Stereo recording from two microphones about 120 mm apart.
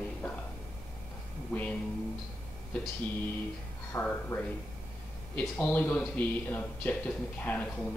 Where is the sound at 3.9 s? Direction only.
15° left (ahead or behind).